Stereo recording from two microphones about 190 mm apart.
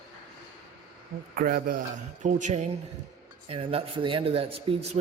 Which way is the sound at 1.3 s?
50° right (ahead or behind).